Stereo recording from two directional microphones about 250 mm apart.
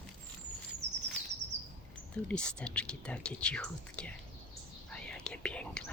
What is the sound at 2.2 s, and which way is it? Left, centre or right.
Speech, centre.